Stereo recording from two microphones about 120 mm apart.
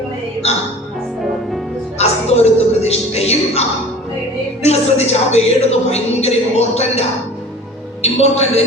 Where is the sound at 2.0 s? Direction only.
65° left (ahead or behind).